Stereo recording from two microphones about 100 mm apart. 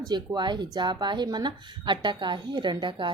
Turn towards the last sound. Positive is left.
turn(degrees=-50)  # may be behind; listen again after turning